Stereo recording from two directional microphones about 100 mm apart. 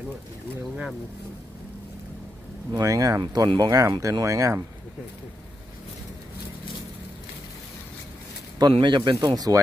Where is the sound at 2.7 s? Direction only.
35° right (ahead or behind).